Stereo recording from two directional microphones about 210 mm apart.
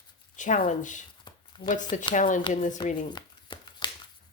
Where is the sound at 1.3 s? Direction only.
20° left (ahead or behind).